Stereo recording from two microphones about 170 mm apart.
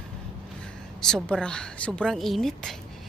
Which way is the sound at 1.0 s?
5° left (ahead or behind).